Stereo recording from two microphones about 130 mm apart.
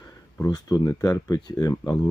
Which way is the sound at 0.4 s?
30° left (ahead or behind).